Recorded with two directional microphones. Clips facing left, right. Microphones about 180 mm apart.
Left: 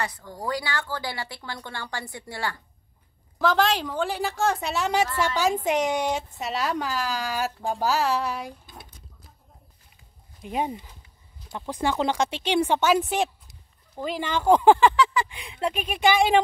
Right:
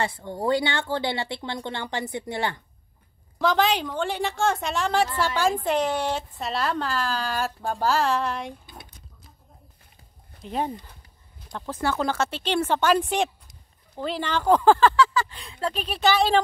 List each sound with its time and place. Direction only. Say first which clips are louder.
0.0 s speech: right 5 dB; 25° right (ahead or behind)
3.3 s a woman's voice: even; centre (ahead or behind)
10.4 s speech: even; 10° left (ahead or behind)